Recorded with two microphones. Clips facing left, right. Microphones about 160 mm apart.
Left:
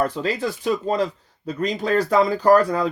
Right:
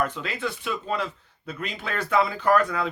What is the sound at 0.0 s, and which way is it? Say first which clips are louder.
Speech: left 5 dB; 35° left (ahead or behind).